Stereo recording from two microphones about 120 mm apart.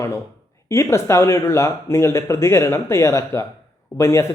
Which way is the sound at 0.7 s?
25° left (ahead or behind).